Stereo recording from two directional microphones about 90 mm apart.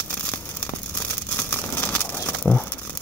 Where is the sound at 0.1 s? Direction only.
20° left (ahead or behind).